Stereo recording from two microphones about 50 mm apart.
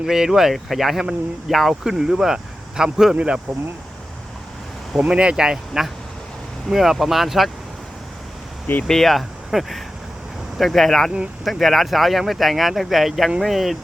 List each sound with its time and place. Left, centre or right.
0.0 s speech: centre
4.9 s speech: right; by 7.5 s centre
8.9 s speech: centre